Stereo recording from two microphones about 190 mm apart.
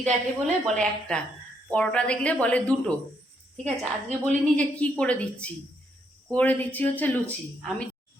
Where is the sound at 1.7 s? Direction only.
5° left (ahead or behind).